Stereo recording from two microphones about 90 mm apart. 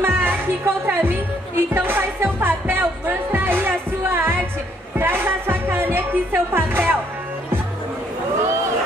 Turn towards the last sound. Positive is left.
turn(degrees=-25)  # may be behind; listen again after turning